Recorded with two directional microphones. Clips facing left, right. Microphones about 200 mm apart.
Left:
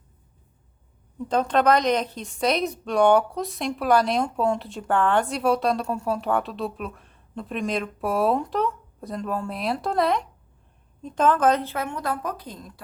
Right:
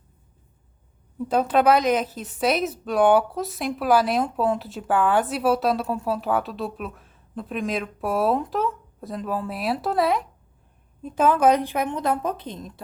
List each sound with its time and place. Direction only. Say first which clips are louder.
1.3 s a woman's voice: right 1 dB; 5° right (ahead or behind); by 12.8 s 25° right (ahead or behind)